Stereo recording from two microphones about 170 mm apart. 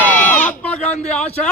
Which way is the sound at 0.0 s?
10° left (ahead or behind).